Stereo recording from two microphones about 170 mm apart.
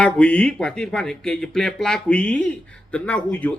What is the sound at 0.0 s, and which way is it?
Speech, 5° left (ahead or behind).